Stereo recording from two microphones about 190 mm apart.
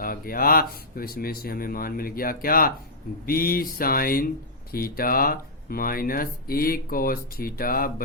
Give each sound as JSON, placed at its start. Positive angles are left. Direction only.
{"t": 0.0, "sound": "speech", "side_deg": 50}